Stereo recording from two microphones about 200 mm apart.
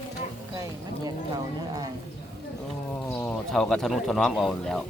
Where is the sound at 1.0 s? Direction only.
20° right (ahead or behind).